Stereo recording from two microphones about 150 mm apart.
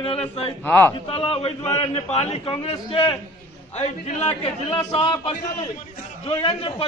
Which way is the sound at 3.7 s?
45° left (ahead or behind).